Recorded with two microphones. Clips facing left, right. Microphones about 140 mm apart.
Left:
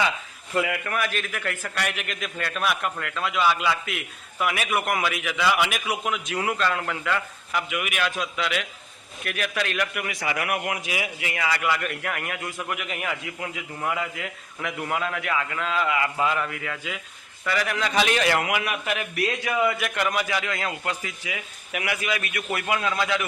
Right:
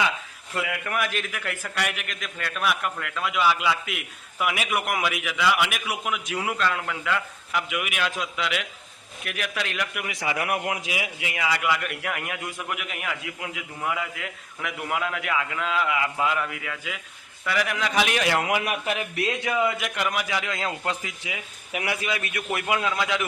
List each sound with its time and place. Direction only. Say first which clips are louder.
0.5 s a man's voice: left 4 dB; centre (ahead or behind)
0.9 s a man's voice: even; 15° right (ahead or behind)
12.7 s a man's voice: left 2 dB; centre (ahead or behind)
18.6 s speech: right 1 dB; 35° right (ahead or behind)
19.3 s a man's voice: even; 20° right (ahead or behind)